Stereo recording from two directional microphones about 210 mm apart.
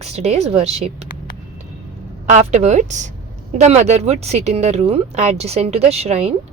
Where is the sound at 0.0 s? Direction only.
30° right (ahead or behind).